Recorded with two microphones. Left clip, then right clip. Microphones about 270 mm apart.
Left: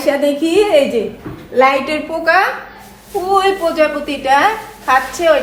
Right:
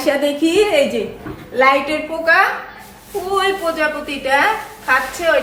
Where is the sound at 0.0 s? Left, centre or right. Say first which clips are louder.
Left 2 dB; centre.